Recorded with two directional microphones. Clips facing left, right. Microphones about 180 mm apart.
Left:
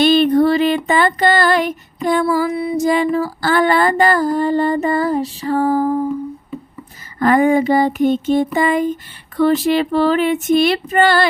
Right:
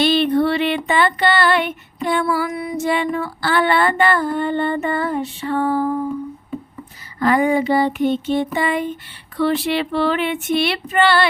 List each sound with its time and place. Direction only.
0.0 s a sound: 45° left (ahead or behind)
0.9 s female singing: 40° left (ahead or behind)
7.2 s female singing: 50° left (ahead or behind)